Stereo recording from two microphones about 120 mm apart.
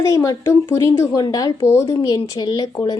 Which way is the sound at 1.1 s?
35° left (ahead or behind).